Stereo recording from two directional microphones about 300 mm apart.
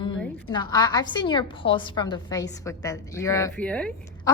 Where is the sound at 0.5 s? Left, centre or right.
Centre.